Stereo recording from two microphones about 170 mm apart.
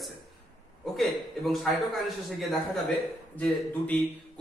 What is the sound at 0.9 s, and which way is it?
A man's voice, centre (ahead or behind).